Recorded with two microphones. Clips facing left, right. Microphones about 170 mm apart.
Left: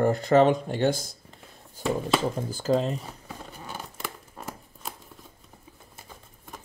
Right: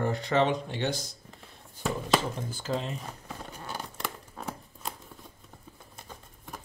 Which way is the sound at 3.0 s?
Centre (ahead or behind).